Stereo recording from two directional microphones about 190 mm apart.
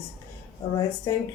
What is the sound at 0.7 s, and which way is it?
Speech, 20° left (ahead or behind).